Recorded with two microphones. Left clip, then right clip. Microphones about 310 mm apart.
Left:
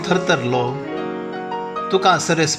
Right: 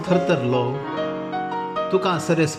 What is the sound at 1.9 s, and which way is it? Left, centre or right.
Speech, centre.